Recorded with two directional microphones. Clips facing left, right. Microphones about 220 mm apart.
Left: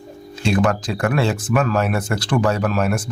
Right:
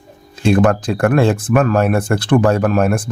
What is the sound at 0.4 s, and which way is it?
Speech, 55° right (ahead or behind).